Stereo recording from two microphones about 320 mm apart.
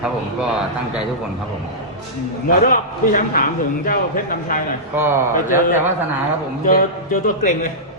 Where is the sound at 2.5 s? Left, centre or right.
Left.